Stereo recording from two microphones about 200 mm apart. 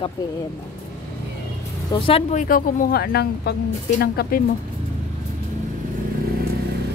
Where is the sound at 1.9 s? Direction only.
30° left (ahead or behind).